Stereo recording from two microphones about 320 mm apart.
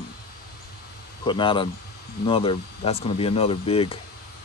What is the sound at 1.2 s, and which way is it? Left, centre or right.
Speech, centre.